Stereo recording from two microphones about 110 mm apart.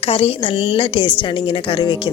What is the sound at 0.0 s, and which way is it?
Speech, 60° left (ahead or behind).